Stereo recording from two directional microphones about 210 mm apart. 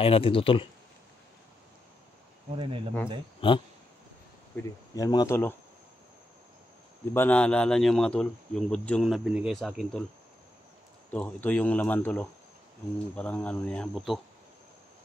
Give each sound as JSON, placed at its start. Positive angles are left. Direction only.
{"t": 0.0, "sound": "speech", "side_deg": 25}
{"t": 2.5, "sound": "speech", "side_deg": -25}
{"t": 3.3, "sound": "speech", "side_deg": 25}
{"t": 4.6, "sound": "speech", "side_deg": 10}
{"t": 7.2, "sound": "speech", "side_deg": 5}
{"t": 11.1, "sound": "speech", "side_deg": 5}